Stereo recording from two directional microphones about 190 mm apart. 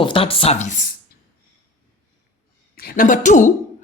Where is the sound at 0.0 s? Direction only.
25° left (ahead or behind).